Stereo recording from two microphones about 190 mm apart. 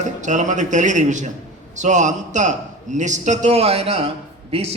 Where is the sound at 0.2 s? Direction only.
40° right (ahead or behind).